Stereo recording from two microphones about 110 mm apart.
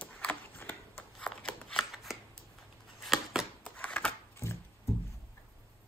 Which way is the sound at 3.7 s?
10° left (ahead or behind).